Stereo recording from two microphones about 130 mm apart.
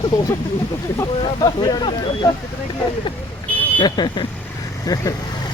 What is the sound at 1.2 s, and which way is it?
Speech, 35° left (ahead or behind).